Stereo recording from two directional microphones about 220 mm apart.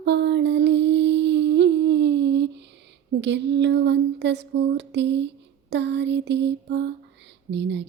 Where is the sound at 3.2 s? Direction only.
50° right (ahead or behind).